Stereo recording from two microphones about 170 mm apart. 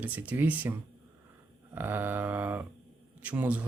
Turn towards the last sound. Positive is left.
turn(degrees=-10)  # may be behind; listen again after turning